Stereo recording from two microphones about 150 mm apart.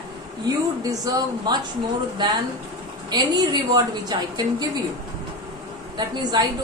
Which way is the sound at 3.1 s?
30° right (ahead or behind).